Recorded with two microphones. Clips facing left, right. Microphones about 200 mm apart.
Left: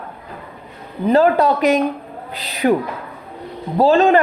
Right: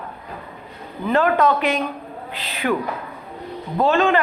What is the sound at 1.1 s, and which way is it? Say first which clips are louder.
A woman's voice: left 4 dB; 35° left (ahead or behind).